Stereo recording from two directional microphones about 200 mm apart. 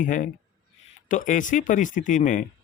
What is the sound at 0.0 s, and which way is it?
Speech, 40° left (ahead or behind).